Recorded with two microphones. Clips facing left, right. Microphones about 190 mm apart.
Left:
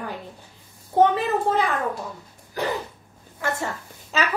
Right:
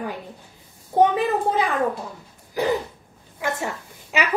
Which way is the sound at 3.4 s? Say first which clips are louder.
Right 1 dB; 15° right (ahead or behind).